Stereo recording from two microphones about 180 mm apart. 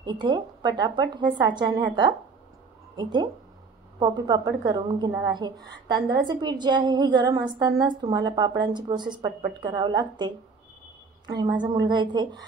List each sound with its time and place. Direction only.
0.0 s a woman's voice: 25° right (ahead or behind)